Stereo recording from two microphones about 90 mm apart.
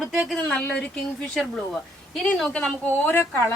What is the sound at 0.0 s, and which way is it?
Speech, 5° right (ahead or behind).